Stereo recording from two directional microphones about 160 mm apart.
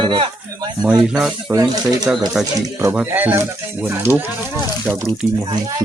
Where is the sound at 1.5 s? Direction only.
20° right (ahead or behind).